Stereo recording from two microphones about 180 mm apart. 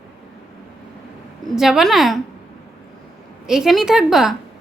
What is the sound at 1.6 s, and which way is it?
Speech, centre (ahead or behind).